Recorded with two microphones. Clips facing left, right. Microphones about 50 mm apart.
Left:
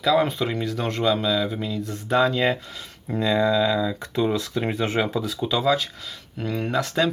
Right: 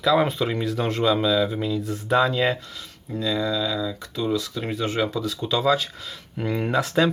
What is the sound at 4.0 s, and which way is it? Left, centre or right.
Speech, left.